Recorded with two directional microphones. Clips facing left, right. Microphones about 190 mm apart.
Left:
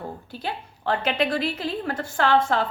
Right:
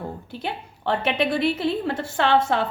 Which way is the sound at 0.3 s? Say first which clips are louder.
Even; 25° right (ahead or behind).